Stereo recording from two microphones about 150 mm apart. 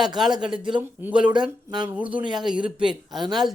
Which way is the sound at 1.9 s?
10° right (ahead or behind).